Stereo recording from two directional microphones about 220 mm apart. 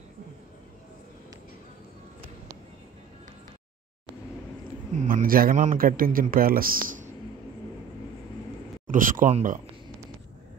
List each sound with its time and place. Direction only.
4.9 s speech: 40° right (ahead or behind)
8.8 s speech: 35° right (ahead or behind)